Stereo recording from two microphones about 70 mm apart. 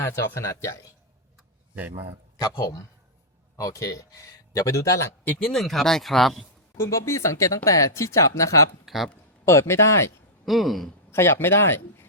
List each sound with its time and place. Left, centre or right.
0.0 s speech: left
2.4 s speech: left
5.4 s speech: centre
6.7 s speech: left
8.9 s speech: centre
9.5 s speech: left
10.4 s speech: centre
11.1 s speech: left